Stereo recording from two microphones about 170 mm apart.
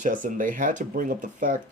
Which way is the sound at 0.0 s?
50° right (ahead or behind).